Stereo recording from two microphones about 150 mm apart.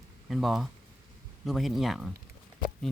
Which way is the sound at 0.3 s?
Centre (ahead or behind).